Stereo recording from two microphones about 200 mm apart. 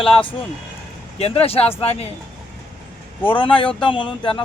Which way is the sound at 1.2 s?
30° left (ahead or behind).